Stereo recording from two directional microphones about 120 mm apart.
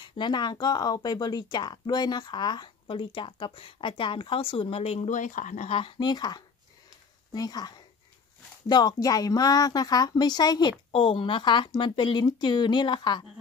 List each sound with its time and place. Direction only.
0.0 s speech: 40° left (ahead or behind); by 5.7 s 90° left
5.7 s speech: 45° left (ahead or behind)